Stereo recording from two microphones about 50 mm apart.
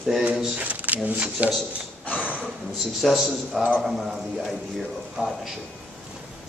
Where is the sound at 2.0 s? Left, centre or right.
Left.